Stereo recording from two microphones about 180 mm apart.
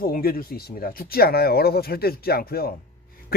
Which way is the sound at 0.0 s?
55° left (ahead or behind).